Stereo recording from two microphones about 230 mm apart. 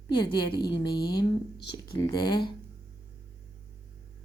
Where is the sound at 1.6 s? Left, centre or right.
Left.